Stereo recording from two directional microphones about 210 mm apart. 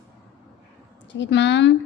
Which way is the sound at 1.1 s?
60° left (ahead or behind).